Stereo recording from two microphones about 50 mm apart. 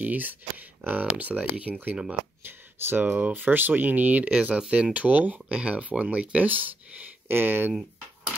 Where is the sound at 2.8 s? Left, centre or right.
Right.